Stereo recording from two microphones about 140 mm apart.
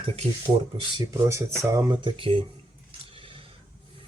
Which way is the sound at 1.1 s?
20° right (ahead or behind).